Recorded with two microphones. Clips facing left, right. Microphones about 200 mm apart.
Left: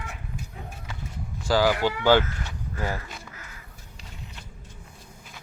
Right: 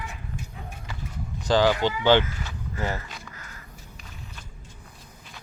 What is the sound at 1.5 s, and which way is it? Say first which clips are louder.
Speech: right 1 dB; 10° left (ahead or behind).